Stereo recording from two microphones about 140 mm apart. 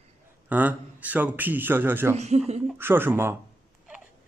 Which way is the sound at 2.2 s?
50° right (ahead or behind).